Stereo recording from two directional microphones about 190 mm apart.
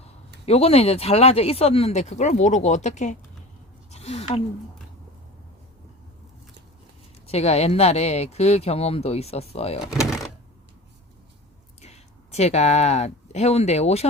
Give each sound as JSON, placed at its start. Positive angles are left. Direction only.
{"t": 0.4, "sound": "speech", "side_deg": 30}
{"t": 3.9, "sound": "a sound", "side_deg": 35}
{"t": 7.3, "sound": "speech", "side_deg": 35}
{"t": 11.8, "sound": "speech", "side_deg": 35}